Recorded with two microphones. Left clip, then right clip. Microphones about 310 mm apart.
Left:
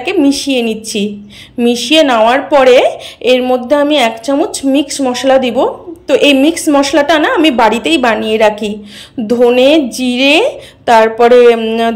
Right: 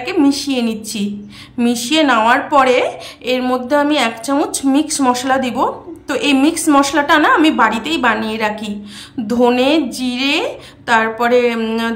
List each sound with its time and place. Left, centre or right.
0.0 s a woman's voice: centre